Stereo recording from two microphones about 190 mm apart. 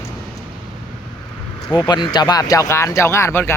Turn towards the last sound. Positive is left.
turn(degrees=15)  # may be behind; listen again after turning